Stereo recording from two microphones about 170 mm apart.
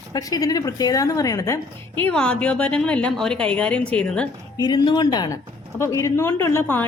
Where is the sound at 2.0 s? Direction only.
5° left (ahead or behind).